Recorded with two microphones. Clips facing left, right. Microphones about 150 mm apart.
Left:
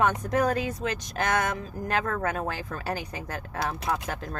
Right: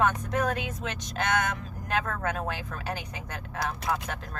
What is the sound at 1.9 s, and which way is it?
Speech, 35° left (ahead or behind).